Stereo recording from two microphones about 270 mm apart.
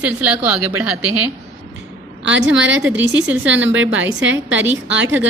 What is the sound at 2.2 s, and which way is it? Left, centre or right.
Speech, right.